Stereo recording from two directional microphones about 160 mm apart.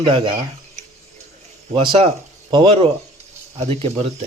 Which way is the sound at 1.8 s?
35° right (ahead or behind).